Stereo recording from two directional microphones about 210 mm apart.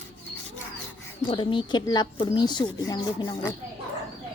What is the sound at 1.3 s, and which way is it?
A woman's voice, 25° left (ahead or behind).